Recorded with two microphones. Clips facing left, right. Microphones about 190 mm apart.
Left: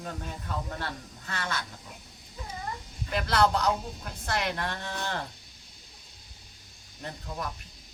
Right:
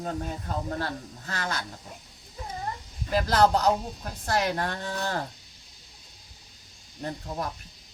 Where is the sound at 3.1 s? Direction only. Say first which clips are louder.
Right 3 dB; 40° right (ahead or behind).